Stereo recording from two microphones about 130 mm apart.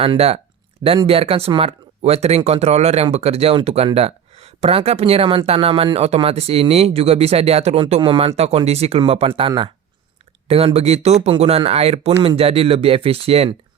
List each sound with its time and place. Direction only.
0.0 s speech: 50° right (ahead or behind)
10.5 s speech: 50° right (ahead or behind)